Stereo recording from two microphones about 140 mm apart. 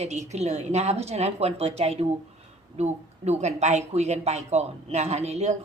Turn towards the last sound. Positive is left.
turn(degrees=-50)  # may be behind; listen again after turning